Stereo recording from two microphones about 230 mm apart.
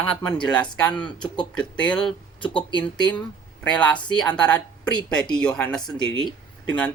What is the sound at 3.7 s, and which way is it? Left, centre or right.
Speech, centre.